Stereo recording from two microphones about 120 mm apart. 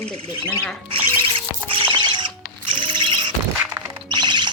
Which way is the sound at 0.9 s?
50° right (ahead or behind).